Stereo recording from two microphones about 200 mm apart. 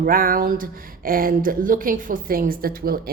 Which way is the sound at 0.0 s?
45° right (ahead or behind).